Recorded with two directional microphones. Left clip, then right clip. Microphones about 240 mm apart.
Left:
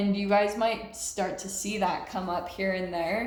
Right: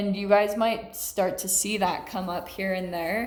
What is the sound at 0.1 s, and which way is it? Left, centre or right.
A woman's voice, right.